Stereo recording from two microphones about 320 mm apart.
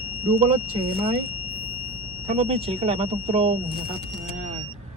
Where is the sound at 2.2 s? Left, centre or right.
Centre.